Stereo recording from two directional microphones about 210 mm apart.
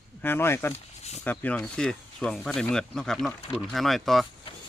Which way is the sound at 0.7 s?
30° left (ahead or behind).